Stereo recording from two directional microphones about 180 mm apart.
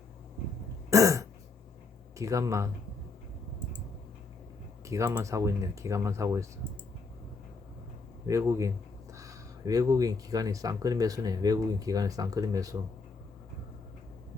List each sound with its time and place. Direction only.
0.9 s throat clearing: 15° right (ahead or behind)
2.1 s speech: 20° right (ahead or behind)
4.9 s speech: 15° right (ahead or behind)
8.3 s speech: 15° right (ahead or behind)